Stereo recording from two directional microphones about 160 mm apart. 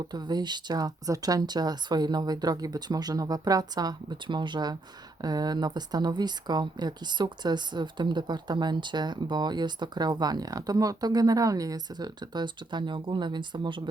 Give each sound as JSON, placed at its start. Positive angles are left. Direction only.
{"t": 0.1, "sound": "speech", "side_deg": -25}